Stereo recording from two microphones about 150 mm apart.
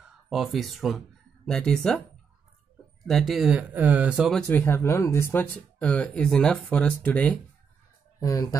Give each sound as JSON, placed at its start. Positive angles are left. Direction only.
{"t": 0.3, "sound": "speech", "side_deg": 0}
{"t": 3.1, "sound": "speech", "side_deg": 0}
{"t": 4.3, "sound": "speech", "side_deg": 5}
{"t": 8.2, "sound": "speech", "side_deg": 20}